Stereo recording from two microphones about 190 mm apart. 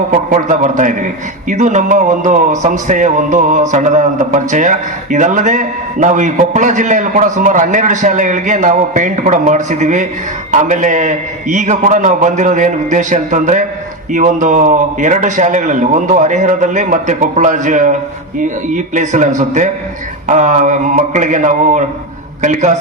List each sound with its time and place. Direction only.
0.3 s a man's voice: 40° right (ahead or behind)